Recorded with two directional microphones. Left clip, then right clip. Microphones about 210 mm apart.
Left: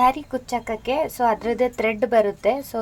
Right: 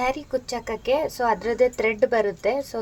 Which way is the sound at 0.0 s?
20° left (ahead or behind).